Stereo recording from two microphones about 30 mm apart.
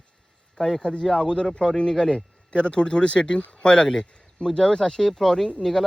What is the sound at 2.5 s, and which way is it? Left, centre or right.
Speech, left.